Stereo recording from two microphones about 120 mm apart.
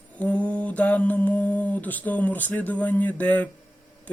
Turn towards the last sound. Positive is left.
turn(degrees=15)  # may be behind; listen again after turning